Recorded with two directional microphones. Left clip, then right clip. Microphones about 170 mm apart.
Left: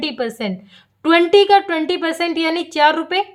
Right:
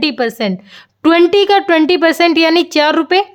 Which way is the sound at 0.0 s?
45° right (ahead or behind).